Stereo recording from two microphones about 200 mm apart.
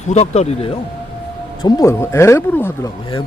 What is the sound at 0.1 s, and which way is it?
Speech, 30° left (ahead or behind).